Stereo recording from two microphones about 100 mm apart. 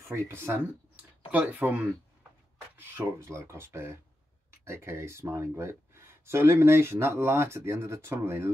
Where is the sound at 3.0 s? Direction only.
25° right (ahead or behind).